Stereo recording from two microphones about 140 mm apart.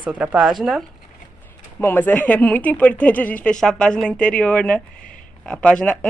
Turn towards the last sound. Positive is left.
turn(degrees=10)  # may be behind; listen again after turning